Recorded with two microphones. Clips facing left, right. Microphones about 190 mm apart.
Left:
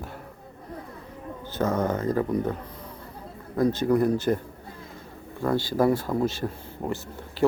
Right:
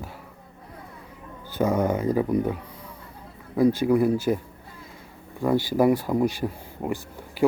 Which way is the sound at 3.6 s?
10° right (ahead or behind).